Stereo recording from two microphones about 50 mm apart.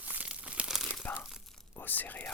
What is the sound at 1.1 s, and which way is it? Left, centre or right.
Tearing, left.